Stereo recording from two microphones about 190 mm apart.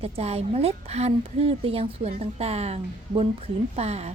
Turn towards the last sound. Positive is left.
turn(degrees=-35)  # may be behind; listen again after turning